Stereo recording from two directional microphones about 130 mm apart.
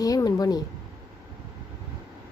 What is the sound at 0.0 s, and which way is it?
Speech, 30° left (ahead or behind).